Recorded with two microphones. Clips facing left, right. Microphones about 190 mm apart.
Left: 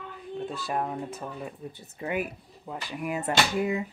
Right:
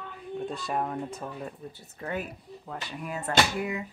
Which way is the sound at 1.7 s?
15° left (ahead or behind).